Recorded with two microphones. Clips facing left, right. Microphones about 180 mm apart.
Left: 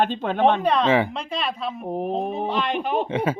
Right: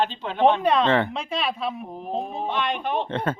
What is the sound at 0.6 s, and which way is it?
A woman's voice, centre (ahead or behind).